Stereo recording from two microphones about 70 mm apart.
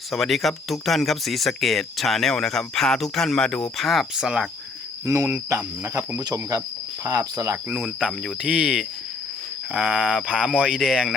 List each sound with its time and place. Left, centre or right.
0.1 s speech: centre
4.1 s speech: centre
5.0 s speech: right
5.5 s cricket: right
6.1 s cricket: right
7.1 s speech: right
7.7 s speech: centre
8.1 s speech: centre
8.4 s speech: centre